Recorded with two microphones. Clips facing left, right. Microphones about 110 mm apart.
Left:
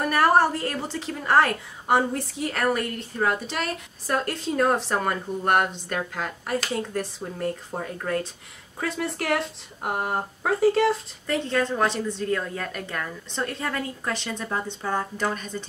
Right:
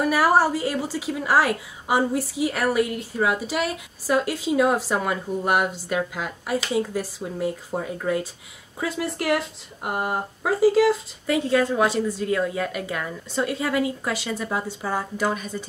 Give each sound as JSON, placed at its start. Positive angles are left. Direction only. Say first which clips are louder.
{"t": 0.0, "sound": "a woman's voice", "louder": "right 1 dB", "side_deg": -5}